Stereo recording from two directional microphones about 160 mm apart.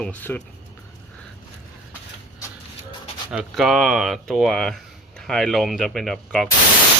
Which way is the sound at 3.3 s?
Centre (ahead or behind).